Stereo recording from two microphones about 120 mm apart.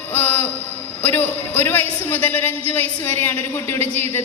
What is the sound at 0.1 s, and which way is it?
Train, 15° left (ahead or behind).